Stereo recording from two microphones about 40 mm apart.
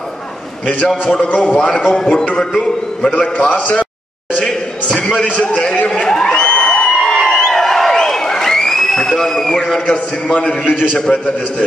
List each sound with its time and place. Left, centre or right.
1.3 s a man's voice: left
1.7 s a man's voice: left
3.2 s a man's voice: left
4.9 s a sound: centre
5.2 s a man's voice: left
6.0 s music: centre
7.0 s a sound: centre
9.8 s a man's voice: left
11.0 s a man's voice: left